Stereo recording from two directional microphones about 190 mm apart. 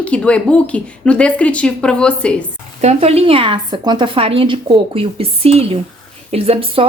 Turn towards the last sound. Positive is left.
turn(degrees=-30)  # may be behind; listen again after turning